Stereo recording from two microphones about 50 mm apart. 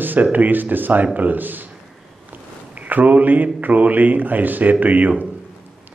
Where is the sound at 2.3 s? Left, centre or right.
Right.